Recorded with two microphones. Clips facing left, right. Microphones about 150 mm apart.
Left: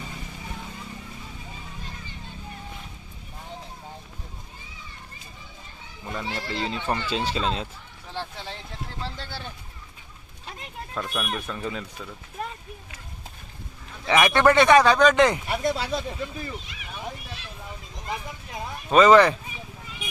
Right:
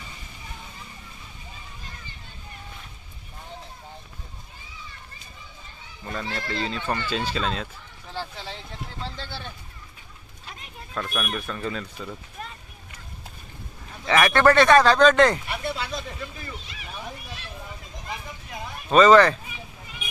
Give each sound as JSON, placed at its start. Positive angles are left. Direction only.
{"t": 6.1, "sound": "speech", "side_deg": 10}
{"t": 8.1, "sound": "speech", "side_deg": 0}
{"t": 10.9, "sound": "speech", "side_deg": 15}
{"t": 14.1, "sound": "speech", "side_deg": 15}
{"t": 15.4, "sound": "speech", "side_deg": 40}
{"t": 18.9, "sound": "speech", "side_deg": 5}